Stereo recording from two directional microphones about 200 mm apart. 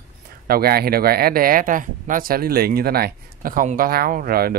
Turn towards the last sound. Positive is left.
turn(degrees=-50)  # may be behind; listen again after turning